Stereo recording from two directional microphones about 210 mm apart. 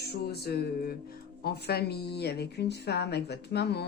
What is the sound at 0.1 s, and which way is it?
Speech, 50° left (ahead or behind).